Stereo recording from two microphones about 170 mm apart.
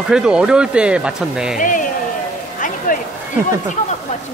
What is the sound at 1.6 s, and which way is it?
Speech, 50° left (ahead or behind).